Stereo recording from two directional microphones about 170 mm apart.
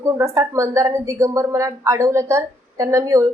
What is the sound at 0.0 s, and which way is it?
A woman's voice, 15° right (ahead or behind).